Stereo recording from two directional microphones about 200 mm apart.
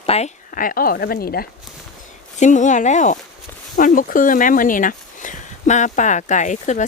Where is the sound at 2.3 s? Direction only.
40° left (ahead or behind).